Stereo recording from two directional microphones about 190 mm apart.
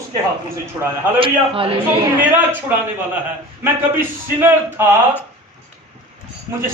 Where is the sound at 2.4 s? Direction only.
10° right (ahead or behind).